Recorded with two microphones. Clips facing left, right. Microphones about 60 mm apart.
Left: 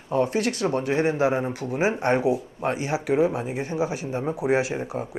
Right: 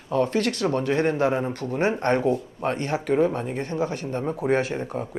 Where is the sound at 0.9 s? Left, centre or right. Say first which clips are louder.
Even; centre.